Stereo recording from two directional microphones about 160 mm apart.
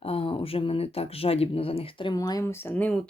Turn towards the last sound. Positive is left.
turn(degrees=10)  # may be behind; listen again after turning